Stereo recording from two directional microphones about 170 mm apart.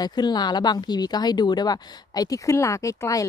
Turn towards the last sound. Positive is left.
turn(degrees=20)  # may be behind; listen again after turning